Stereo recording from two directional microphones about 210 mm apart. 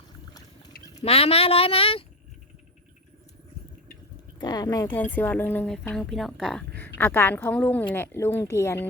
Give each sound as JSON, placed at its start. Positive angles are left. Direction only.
{"t": 1.0, "sound": "speech", "side_deg": 30}
{"t": 4.4, "sound": "speech", "side_deg": 20}